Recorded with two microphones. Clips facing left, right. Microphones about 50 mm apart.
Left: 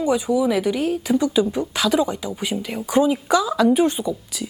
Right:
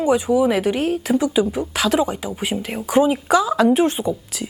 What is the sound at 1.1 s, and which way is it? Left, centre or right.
Speech, centre.